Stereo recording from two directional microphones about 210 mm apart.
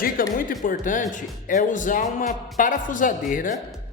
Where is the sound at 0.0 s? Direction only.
40° left (ahead or behind).